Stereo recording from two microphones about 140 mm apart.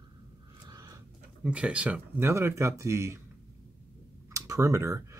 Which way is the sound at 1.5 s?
10° right (ahead or behind).